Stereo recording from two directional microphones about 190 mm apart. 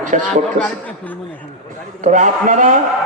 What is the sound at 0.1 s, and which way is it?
Speech, 45° right (ahead or behind).